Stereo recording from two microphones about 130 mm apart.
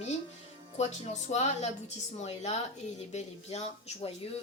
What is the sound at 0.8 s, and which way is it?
A woman's voice, 60° left (ahead or behind).